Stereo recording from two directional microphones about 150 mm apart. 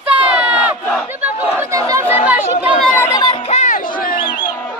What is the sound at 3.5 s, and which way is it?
Music, 60° left (ahead or behind).